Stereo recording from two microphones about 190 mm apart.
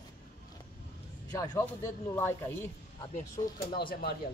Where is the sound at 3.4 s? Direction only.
20° left (ahead or behind).